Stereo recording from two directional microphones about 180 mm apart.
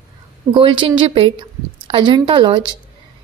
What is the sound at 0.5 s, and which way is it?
A woman's voice, 25° right (ahead or behind).